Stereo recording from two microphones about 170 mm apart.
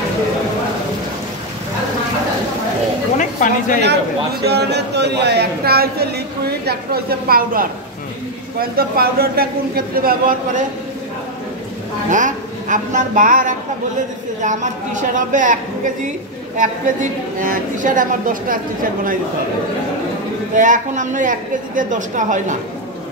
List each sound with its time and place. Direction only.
3.2 s a sound: 50° left (ahead or behind)
4.5 s a man's voice: 80° right; by 10.6 s 55° right (ahead or behind)
12.1 s a woman's voice: 45° right (ahead or behind)
20.5 s a woman's voice: 50° right (ahead or behind)